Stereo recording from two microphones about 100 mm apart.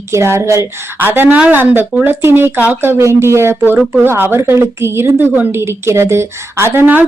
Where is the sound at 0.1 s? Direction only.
30° right (ahead or behind).